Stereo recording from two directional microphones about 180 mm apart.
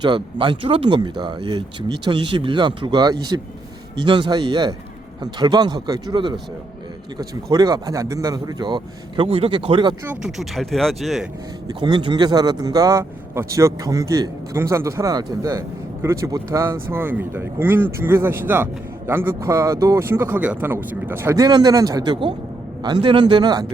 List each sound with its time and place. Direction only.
0.0 s speech: 25° right (ahead or behind)
10.1 s speech: 5° right (ahead or behind)
11.7 s speech: 25° right (ahead or behind)